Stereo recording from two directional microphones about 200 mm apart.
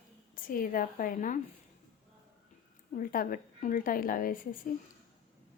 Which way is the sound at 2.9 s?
45° left (ahead or behind).